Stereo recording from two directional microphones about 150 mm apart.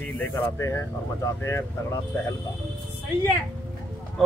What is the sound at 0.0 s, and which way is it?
Speech, 15° left (ahead or behind).